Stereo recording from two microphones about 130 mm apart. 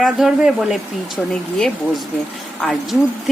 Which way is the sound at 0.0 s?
5° right (ahead or behind).